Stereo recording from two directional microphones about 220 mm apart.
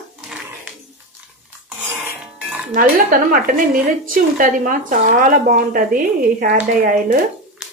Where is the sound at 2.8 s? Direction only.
40° right (ahead or behind).